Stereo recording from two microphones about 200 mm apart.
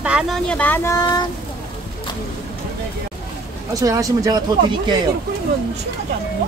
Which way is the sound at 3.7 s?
15° right (ahead or behind).